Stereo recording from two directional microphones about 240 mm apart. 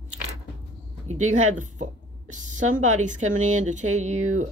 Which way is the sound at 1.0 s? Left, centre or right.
Right.